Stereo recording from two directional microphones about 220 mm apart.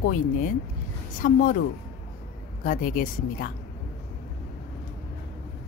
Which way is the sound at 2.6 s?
40° left (ahead or behind).